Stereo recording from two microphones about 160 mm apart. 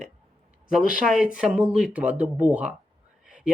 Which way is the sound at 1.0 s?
5° right (ahead or behind).